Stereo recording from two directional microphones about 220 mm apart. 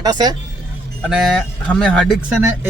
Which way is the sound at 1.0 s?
Centre (ahead or behind).